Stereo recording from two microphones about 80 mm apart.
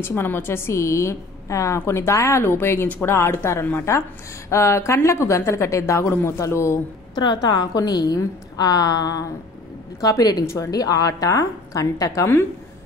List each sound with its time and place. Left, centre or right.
0.0 s speech: left
7.2 s a woman's voice: left
10.7 s a woman's voice: left